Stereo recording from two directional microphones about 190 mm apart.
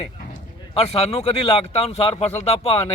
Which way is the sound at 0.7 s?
30° left (ahead or behind).